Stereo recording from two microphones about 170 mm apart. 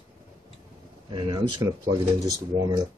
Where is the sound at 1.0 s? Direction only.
25° right (ahead or behind).